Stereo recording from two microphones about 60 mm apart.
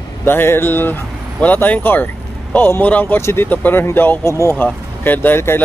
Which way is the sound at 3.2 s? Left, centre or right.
Left.